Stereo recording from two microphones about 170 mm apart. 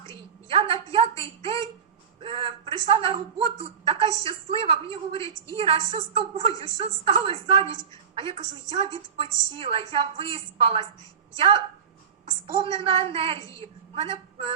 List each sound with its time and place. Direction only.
0.4 s a woman's voice: 30° right (ahead or behind)
0.9 s a sound: 35° right (ahead or behind)
2.2 s a man's voice: 30° right (ahead or behind)